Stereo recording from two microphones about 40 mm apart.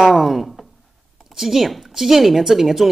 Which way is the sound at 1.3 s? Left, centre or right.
Centre.